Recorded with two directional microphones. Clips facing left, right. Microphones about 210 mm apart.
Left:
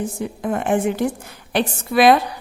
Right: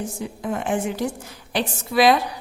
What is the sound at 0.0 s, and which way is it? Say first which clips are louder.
A woman's voice: left 4 dB; 55° left (ahead or behind).